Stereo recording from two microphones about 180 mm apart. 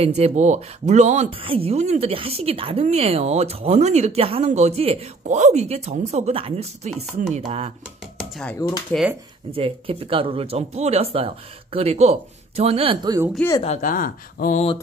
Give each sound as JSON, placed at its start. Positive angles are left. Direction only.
{"t": 0.0, "sound": "speech", "side_deg": -35}
{"t": 8.6, "sound": "speech", "side_deg": 20}
{"t": 9.5, "sound": "speech", "side_deg": -30}
{"t": 13.6, "sound": "speech", "side_deg": 40}